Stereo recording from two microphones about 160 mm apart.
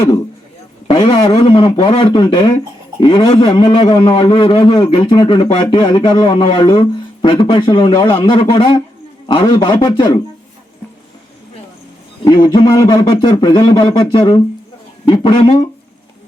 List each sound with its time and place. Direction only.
0.9 s a man's voice: 35° left (ahead or behind)
12.2 s a man's voice: 25° left (ahead or behind)